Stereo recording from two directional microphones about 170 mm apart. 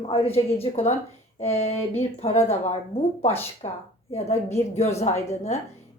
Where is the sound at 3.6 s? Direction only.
30° left (ahead or behind).